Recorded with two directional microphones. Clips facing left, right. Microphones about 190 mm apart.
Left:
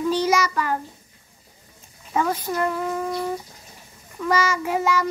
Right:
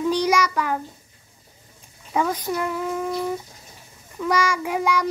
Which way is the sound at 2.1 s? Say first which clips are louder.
Even; 10° right (ahead or behind).